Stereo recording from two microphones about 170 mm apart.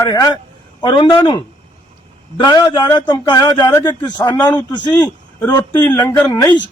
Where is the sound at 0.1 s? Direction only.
20° left (ahead or behind).